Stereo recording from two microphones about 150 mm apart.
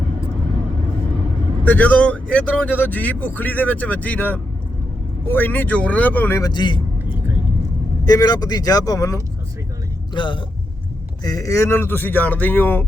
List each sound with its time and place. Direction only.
1.6 s speech: 10° left (ahead or behind); by 6.8 s 30° left (ahead or behind)
8.0 s speech: 25° left (ahead or behind)
10.2 s speech: 30° left (ahead or behind); by 12.8 s 15° left (ahead or behind)